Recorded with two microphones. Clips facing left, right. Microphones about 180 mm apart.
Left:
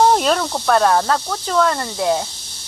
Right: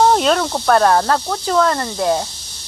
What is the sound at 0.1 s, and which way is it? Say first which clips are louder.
Snake: right 1 dB; 5° left (ahead or behind).